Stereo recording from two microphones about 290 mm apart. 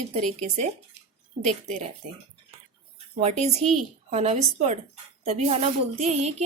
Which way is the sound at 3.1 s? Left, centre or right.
Right.